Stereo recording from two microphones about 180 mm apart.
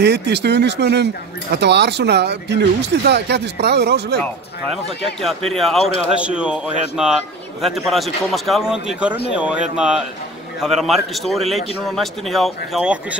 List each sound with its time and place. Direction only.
0.0 s speech: 70° right (ahead or behind)
5.5 s a man's voice: centre (ahead or behind)